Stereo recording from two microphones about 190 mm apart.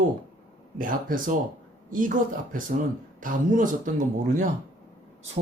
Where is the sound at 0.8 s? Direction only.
45° right (ahead or behind).